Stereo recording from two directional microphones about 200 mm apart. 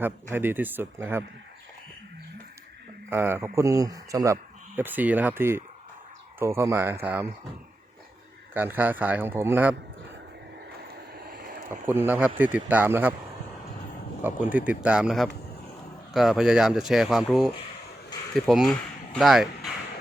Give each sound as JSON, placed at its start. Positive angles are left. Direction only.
{"t": 0.0, "sound": "speech", "side_deg": -10}
{"t": 3.1, "sound": "speech", "side_deg": -10}
{"t": 8.5, "sound": "speech", "side_deg": -10}
{"t": 11.7, "sound": "speech", "side_deg": -10}
{"t": 14.3, "sound": "speech", "side_deg": -10}